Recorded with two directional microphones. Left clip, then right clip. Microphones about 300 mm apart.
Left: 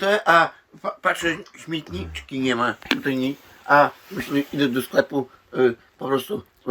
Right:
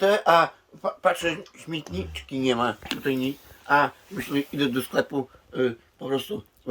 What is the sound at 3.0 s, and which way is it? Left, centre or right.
Speech, centre.